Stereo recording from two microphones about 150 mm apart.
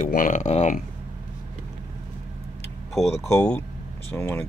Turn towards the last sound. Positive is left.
turn(degrees=15)  # may be behind; listen again after turning